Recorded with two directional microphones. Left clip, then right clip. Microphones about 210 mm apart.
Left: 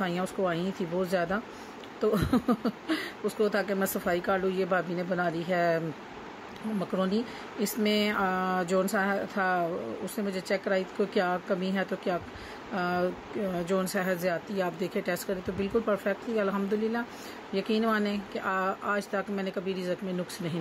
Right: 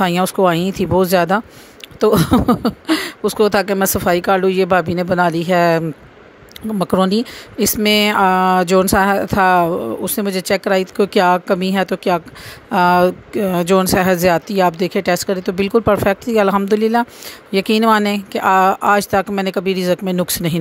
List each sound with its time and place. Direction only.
0.0 s speech: 45° right (ahead or behind)